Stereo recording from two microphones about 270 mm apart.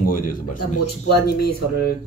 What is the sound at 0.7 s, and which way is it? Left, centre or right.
Speech, left.